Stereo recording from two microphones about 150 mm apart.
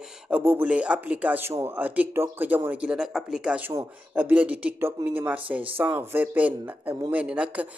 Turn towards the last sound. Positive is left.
turn(degrees=-5)  # may be behind; listen again after turning